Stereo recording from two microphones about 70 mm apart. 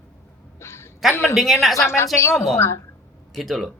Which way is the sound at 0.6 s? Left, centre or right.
Left.